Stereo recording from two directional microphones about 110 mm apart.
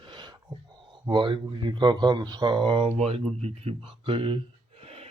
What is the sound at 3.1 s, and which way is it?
Speech, 65° right (ahead or behind).